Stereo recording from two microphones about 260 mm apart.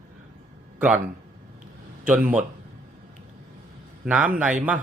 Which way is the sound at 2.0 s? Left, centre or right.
Centre.